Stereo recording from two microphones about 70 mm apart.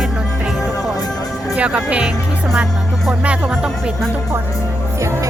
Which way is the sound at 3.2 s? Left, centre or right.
Centre.